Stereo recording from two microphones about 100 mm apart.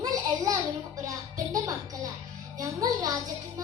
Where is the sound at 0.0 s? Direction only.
35° right (ahead or behind).